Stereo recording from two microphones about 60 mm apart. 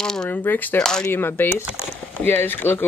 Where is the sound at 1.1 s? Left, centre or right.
Left.